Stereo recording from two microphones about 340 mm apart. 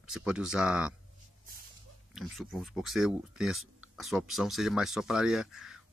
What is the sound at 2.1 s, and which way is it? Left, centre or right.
Speech, centre.